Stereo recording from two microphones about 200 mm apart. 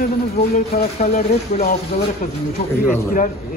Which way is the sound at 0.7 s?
35° left (ahead or behind).